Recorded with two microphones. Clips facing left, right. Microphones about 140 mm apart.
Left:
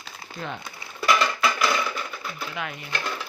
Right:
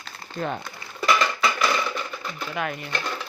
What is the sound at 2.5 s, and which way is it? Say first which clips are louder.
Speech: right 7 dB; 50° right (ahead or behind).